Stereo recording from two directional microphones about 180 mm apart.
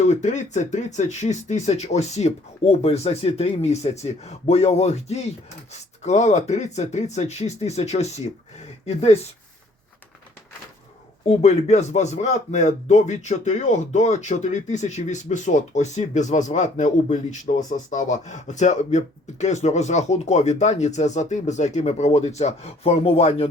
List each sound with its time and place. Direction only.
0.0 s speech: 40° left (ahead or behind)
11.3 s speech: 35° left (ahead or behind)